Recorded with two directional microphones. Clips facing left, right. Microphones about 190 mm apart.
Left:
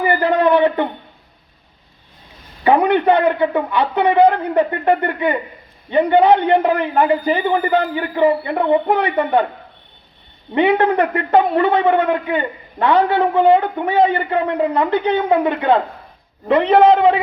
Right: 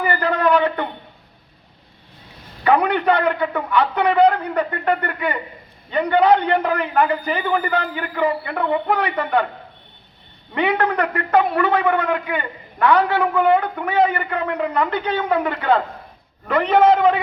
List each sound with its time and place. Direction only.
0.0 s a man's voice: 25° left (ahead or behind)
2.6 s a man's voice: 25° left (ahead or behind)
10.5 s a man's voice: 25° left (ahead or behind)